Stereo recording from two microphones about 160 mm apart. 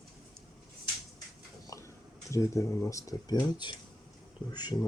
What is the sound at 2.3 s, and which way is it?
Speech, 20° left (ahead or behind).